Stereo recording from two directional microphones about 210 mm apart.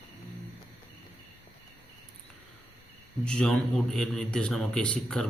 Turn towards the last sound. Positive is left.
turn(degrees=5)  # may be behind; listen again after turning